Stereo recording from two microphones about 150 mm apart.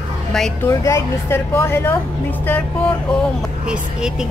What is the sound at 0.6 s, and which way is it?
A woman's voice, 20° left (ahead or behind).